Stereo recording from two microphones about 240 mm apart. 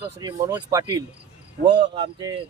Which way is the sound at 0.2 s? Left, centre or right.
Centre.